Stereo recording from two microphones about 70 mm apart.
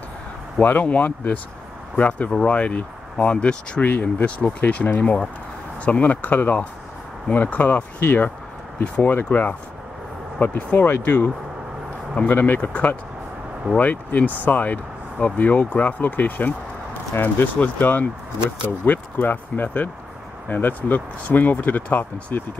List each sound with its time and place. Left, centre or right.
0.6 s speech: left
10.7 s speech: left
12.2 s speech: left